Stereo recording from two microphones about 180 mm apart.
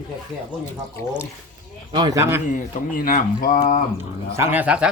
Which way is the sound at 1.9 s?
20° right (ahead or behind).